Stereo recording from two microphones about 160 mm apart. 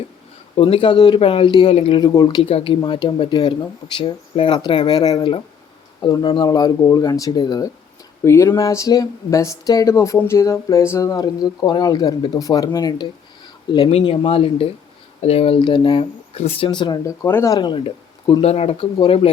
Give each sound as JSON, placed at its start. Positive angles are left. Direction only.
{"t": 0.5, "sound": "speech", "side_deg": 35}
{"t": 2.0, "sound": "speech", "side_deg": 25}
{"t": 2.4, "sound": "speech", "side_deg": 35}
{"t": 17.2, "sound": "speech", "side_deg": 15}